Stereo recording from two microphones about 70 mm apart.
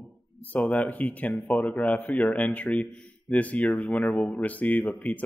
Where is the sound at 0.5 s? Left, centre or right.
Left.